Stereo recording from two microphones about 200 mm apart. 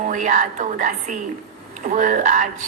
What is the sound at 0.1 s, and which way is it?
A woman's voice, 40° right (ahead or behind).